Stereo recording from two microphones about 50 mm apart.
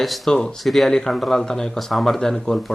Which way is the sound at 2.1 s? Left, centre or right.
Centre.